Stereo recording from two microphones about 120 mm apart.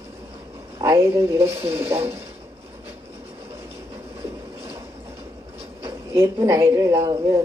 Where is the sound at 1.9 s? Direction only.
55° right (ahead or behind).